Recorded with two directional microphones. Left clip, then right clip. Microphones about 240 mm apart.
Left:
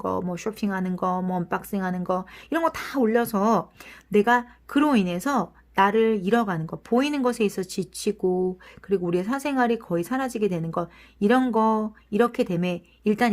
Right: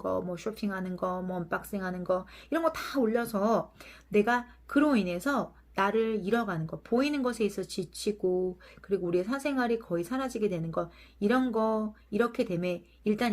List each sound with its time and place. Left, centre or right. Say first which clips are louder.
0.0 s speech: left 4 dB; left
4.7 s speech: left 4 dB; left